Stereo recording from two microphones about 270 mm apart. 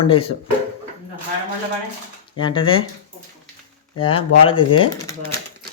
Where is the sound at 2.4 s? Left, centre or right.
Centre.